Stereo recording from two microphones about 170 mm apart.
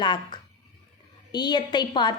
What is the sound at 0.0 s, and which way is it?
A woman's voice, 25° left (ahead or behind).